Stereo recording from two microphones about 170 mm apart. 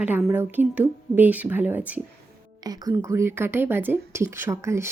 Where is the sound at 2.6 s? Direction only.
20° right (ahead or behind).